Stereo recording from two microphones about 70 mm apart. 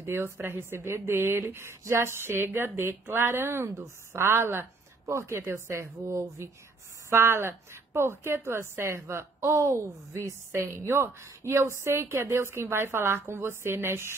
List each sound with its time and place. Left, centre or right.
0.0 s a woman's voice: right